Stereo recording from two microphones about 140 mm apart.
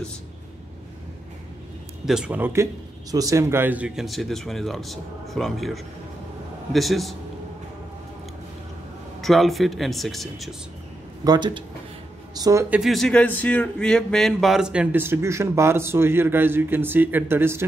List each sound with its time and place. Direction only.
2.0 s speech: 5° right (ahead or behind)
9.2 s speech: centre (ahead or behind)
11.2 s speech: 30° right (ahead or behind)
12.6 s speech: 5° right (ahead or behind)